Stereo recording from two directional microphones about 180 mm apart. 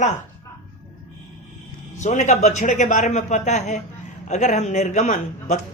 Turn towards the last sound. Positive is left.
turn(degrees=40)  # may be behind; listen again after turning